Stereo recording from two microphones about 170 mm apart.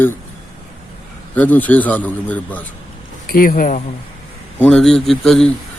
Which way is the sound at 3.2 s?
60° left (ahead or behind).